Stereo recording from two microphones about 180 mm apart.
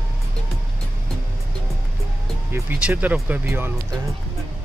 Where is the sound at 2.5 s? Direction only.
10° right (ahead or behind).